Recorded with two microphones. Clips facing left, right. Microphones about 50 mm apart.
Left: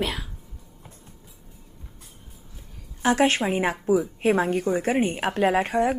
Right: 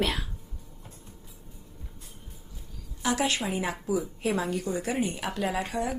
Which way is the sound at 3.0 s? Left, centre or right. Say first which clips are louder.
Left 7 dB; left.